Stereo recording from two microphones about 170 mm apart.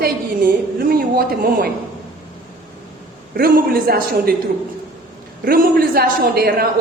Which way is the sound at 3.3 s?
60° right (ahead or behind).